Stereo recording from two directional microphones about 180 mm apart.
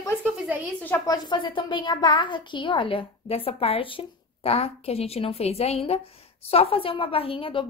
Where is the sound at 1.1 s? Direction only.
25° left (ahead or behind).